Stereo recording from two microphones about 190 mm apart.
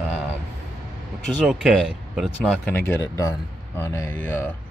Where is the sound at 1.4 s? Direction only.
5° right (ahead or behind).